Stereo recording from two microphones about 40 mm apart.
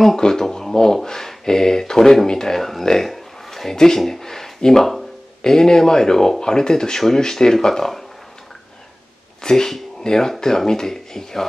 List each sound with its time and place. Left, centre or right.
0.0 s speech: centre
9.4 s speech: centre